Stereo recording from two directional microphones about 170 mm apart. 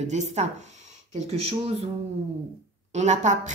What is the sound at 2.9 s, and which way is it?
Speech, 45° right (ahead or behind).